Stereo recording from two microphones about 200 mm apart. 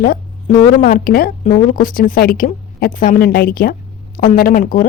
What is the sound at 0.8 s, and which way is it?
A woman's voice, 45° left (ahead or behind).